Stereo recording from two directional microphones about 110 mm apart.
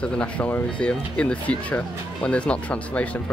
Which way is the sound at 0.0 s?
10° left (ahead or behind).